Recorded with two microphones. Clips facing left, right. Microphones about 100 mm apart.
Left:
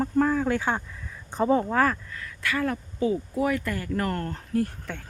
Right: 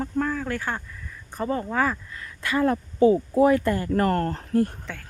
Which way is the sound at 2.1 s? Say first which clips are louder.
Right 3 dB; 25° right (ahead or behind).